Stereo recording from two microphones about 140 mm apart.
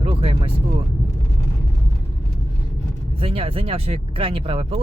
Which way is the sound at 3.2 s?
40° right (ahead or behind).